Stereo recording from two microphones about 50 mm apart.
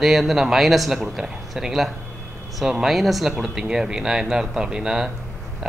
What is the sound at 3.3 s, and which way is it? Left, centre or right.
Speech, centre.